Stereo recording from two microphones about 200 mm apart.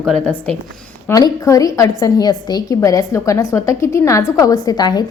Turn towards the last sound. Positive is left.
turn(degrees=20)  # may be behind; listen again after turning